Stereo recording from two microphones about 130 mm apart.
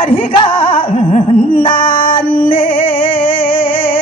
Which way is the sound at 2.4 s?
90° left.